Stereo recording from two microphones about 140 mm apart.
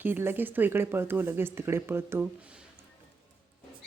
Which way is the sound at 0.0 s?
15° right (ahead or behind).